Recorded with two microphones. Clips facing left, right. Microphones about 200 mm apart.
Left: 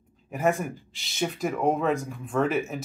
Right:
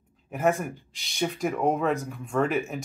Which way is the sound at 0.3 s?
Centre (ahead or behind).